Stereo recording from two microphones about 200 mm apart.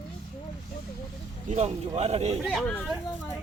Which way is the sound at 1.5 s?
35° right (ahead or behind).